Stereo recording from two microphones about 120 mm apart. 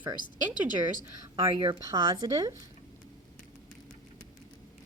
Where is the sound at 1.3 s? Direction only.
45° right (ahead or behind).